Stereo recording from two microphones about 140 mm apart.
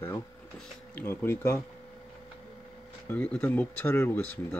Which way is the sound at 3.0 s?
10° left (ahead or behind).